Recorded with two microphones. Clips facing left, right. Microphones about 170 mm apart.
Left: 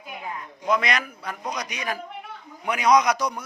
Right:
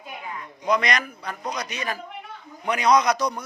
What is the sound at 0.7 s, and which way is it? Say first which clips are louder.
A man's voice: right 1 dB; 5° left (ahead or behind).